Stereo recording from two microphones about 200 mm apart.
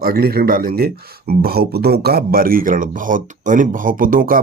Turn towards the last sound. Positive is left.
turn(degrees=-45)  # may be behind; listen again after turning